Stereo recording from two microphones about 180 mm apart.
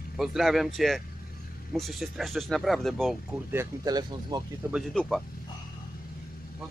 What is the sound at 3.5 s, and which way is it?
Speech, 15° right (ahead or behind).